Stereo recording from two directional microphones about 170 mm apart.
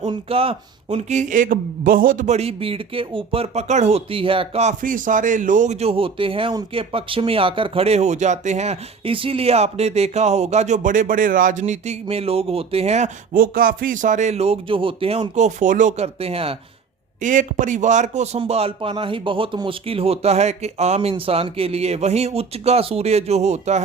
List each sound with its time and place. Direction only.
0.0 s speech: 30° right (ahead or behind)
4.8 s speech: 50° right (ahead or behind)
13.3 s a man's voice: 55° right (ahead or behind); by 16.6 s 35° right (ahead or behind)
17.2 s speech: 50° right (ahead or behind)